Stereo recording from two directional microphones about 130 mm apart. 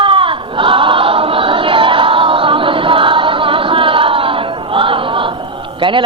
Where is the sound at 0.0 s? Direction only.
40° right (ahead or behind).